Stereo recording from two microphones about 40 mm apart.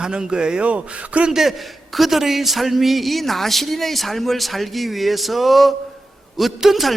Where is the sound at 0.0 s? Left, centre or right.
Centre.